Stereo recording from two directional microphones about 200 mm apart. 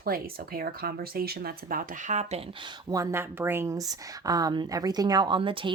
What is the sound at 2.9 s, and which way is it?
Speech, 15° right (ahead or behind).